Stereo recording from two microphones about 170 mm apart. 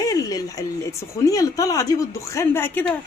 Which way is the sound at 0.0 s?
20° left (ahead or behind).